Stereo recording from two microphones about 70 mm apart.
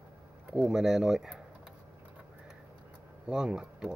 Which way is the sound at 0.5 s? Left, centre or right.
Centre.